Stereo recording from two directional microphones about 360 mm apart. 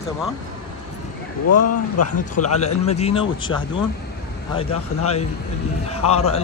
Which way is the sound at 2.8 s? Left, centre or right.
Centre.